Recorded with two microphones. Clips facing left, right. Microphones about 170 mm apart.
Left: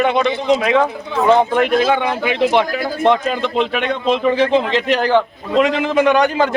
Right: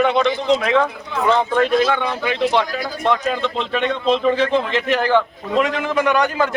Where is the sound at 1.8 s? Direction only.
20° left (ahead or behind).